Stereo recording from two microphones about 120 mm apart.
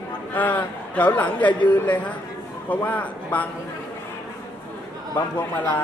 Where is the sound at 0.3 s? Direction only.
15° left (ahead or behind).